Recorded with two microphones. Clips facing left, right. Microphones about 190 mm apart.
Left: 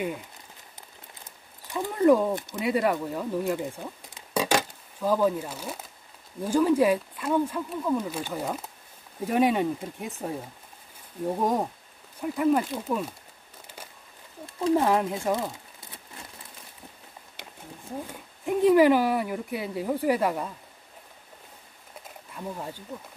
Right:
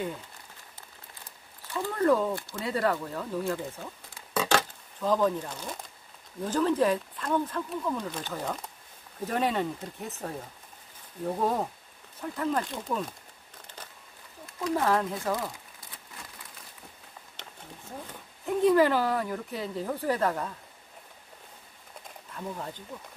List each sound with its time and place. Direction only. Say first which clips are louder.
1.7 s speech: left 4 dB; 15° left (ahead or behind)
14.4 s speech: left 5 dB; 25° left (ahead or behind)
17.4 s speech: left 3 dB; 10° left (ahead or behind)
22.3 s speech: left 1 dB; 10° left (ahead or behind)